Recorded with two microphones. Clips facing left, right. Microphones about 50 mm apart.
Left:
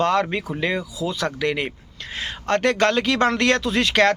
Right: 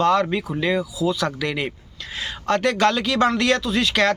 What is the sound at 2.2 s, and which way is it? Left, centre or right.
Speech, left.